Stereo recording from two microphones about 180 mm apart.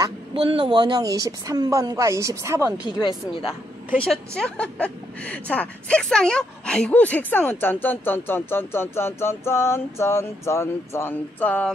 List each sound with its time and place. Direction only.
0.0 s speech: 30° right (ahead or behind)
2.8 s speech: 25° left (ahead or behind)
4.0 s a woman's voice: 5° left (ahead or behind)